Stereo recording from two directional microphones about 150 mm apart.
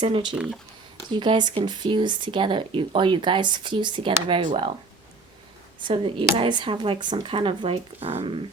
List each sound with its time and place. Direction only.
0.3 s speech: 5° right (ahead or behind)
1.1 s speech: 30° right (ahead or behind)
5.8 s speech: 35° right (ahead or behind)